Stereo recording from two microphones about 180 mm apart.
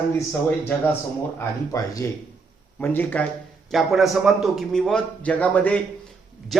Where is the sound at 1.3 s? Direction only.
15° left (ahead or behind).